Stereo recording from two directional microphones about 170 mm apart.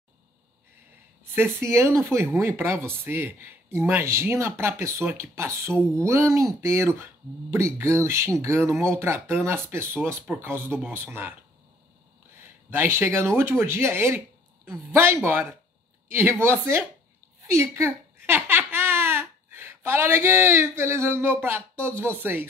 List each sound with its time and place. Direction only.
1.2 s speech: 15° right (ahead or behind)
12.7 s speech: 10° right (ahead or behind)
17.4 s babbling: 15° right (ahead or behind)
21.8 s speech: 15° right (ahead or behind)